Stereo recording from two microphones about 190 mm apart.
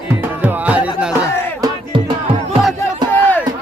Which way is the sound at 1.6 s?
25° right (ahead or behind).